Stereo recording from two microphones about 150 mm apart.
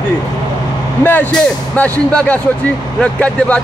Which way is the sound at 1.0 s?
10° left (ahead or behind).